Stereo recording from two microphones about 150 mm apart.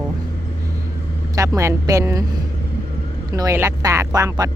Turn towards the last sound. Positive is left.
turn(degrees=-25)  # may be behind; listen again after turning